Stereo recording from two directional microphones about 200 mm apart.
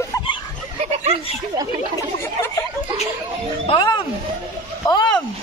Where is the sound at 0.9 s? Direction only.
30° right (ahead or behind).